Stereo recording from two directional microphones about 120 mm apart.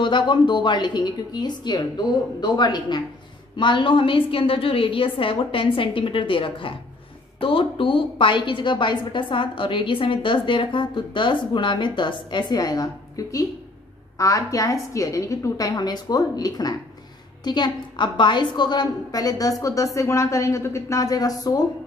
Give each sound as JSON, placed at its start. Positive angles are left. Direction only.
{"t": 0.0, "sound": "a woman's voice", "side_deg": 40}